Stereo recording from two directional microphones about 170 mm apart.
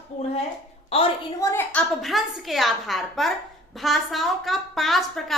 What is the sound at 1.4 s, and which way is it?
A woman's voice, 15° left (ahead or behind).